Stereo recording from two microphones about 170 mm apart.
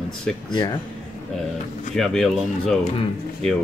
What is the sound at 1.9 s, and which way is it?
Speech, centre (ahead or behind).